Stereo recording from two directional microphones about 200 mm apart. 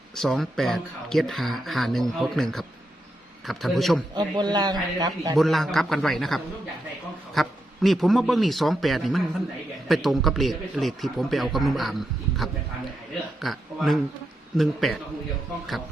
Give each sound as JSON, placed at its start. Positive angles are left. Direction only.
{"t": 0.2, "sound": "speech", "side_deg": 0}
{"t": 4.1, "sound": "a man's voice", "side_deg": -20}
{"t": 5.4, "sound": "speech", "side_deg": 0}